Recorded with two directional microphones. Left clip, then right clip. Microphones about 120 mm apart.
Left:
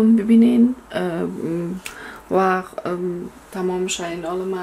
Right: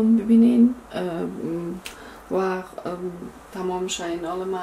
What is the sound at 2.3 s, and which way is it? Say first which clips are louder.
Speech: left 7 dB; 40° left (ahead or behind).